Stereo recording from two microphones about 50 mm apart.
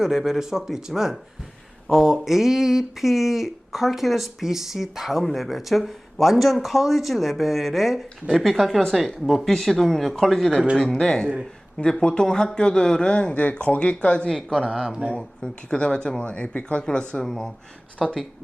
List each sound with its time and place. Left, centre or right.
0.0 s speech: centre
10.5 s speech: centre
10.8 s speech: centre
14.5 s speech: centre
18.0 s speech: centre